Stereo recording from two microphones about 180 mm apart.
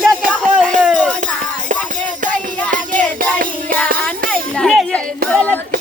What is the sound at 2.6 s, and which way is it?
Music, 45° right (ahead or behind).